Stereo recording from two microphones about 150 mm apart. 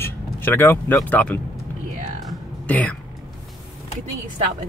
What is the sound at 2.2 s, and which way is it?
Music, 10° left (ahead or behind).